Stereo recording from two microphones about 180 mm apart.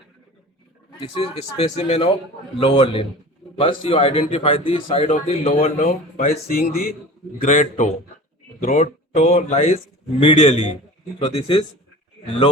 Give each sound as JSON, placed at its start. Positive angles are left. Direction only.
{"t": 0.9, "sound": "a man's voice", "side_deg": 30}
{"t": 6.5, "sound": "a man's voice", "side_deg": 55}
{"t": 7.4, "sound": "a man's voice", "side_deg": 45}